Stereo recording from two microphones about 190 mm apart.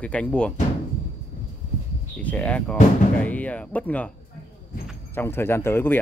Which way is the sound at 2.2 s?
5° left (ahead or behind).